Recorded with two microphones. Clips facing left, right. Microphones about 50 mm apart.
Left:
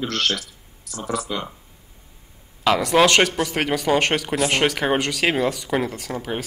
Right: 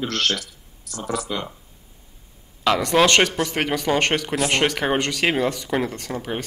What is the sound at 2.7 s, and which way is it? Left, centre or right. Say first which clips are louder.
Speech: left 1 dB; centre.